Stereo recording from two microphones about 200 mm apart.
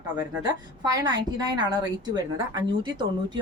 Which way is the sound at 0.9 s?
20° right (ahead or behind).